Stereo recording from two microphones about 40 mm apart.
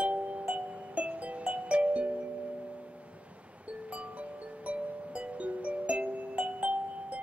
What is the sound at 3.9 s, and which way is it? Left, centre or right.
Music, right.